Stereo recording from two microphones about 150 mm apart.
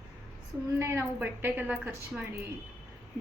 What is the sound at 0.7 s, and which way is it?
A woman's voice, 20° right (ahead or behind).